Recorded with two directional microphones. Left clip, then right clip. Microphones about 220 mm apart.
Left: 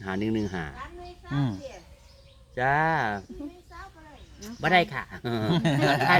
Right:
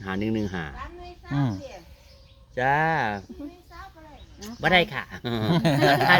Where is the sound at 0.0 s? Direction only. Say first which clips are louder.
Right 1 dB; centre (ahead or behind).